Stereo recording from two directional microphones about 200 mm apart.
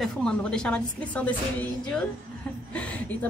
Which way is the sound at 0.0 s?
5° left (ahead or behind).